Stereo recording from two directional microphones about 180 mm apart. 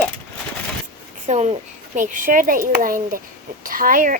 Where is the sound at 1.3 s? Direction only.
40° right (ahead or behind).